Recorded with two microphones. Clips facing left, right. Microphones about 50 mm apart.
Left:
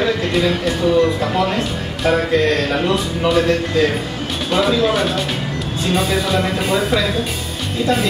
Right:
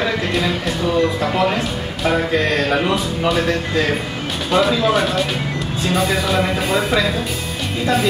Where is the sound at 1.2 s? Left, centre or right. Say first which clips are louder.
Even; centre.